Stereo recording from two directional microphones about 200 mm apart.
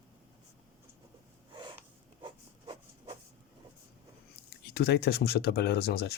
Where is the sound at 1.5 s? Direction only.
25° right (ahead or behind).